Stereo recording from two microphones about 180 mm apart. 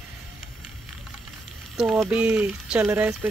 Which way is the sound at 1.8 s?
Centre (ahead or behind).